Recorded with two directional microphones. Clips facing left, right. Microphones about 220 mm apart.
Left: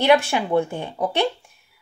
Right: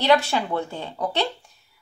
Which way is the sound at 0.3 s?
15° left (ahead or behind).